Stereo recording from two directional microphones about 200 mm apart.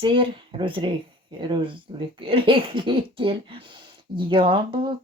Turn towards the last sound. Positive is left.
turn(degrees=-25)  # may be behind; listen again after turning